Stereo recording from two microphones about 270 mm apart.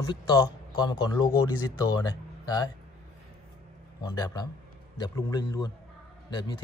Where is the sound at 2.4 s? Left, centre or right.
Centre.